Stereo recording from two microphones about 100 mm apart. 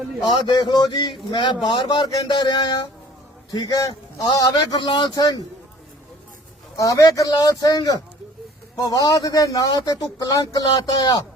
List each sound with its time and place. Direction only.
0.2 s a man's voice: 45° left (ahead or behind)
6.7 s speech: 35° left (ahead or behind)